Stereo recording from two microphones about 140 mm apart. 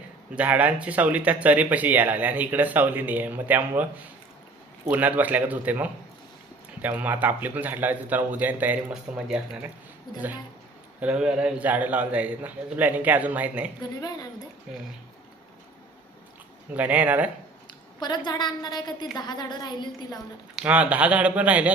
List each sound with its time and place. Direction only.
0.3 s speech: 10° right (ahead or behind)
4.9 s speech: 10° right (ahead or behind)
11.0 s speech: 5° right (ahead or behind)
14.0 s a woman's voice: 30° left (ahead or behind)
16.7 s speech: 10° right (ahead or behind)
18.0 s a woman's voice: 30° left (ahead or behind)
20.6 s speech: 10° right (ahead or behind)